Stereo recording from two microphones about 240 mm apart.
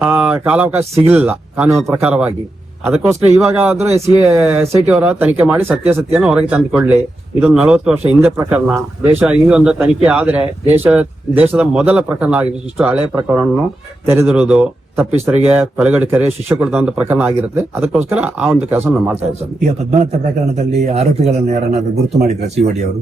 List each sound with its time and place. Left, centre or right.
0.0 s a man's voice: centre
20.6 s speech: right